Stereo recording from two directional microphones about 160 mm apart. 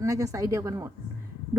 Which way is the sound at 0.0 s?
20° right (ahead or behind).